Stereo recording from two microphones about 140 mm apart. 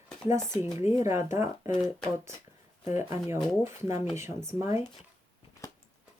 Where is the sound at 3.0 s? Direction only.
20° right (ahead or behind).